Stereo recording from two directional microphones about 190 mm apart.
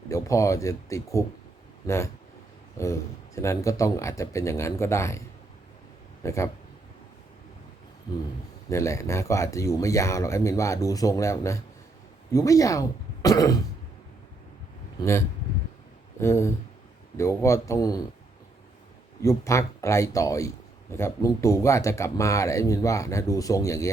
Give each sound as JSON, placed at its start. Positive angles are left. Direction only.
{"t": 0.1, "sound": "speech", "side_deg": 15}
{"t": 2.8, "sound": "speech", "side_deg": 15}
{"t": 6.2, "sound": "speech", "side_deg": 15}
{"t": 8.7, "sound": "speech", "side_deg": 15}
{"t": 15.0, "sound": "speech", "side_deg": 20}
{"t": 16.2, "sound": "speech", "side_deg": 15}
{"t": 19.2, "sound": "speech", "side_deg": 15}